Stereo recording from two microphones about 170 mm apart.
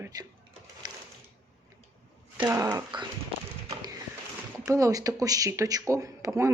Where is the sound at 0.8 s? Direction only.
25° right (ahead or behind).